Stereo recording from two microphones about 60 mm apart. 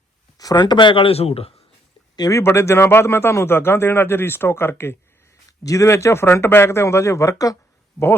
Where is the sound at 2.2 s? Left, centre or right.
Left.